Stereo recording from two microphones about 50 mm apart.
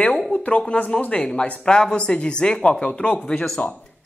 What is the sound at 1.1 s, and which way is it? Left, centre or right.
A man's voice, centre.